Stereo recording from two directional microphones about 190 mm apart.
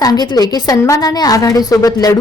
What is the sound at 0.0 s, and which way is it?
A woman's voice, 20° left (ahead or behind).